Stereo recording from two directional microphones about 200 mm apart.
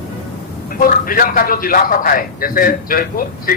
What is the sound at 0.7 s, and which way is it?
A man's voice, 45° left (ahead or behind).